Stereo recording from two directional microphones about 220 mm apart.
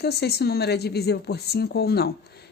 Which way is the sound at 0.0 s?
45° left (ahead or behind).